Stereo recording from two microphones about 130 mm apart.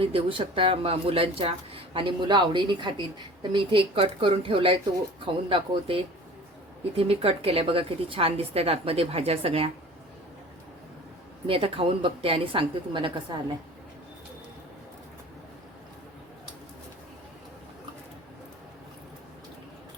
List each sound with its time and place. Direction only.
0.0 s speech: 45° right (ahead or behind)
11.4 s speech: 45° right (ahead or behind)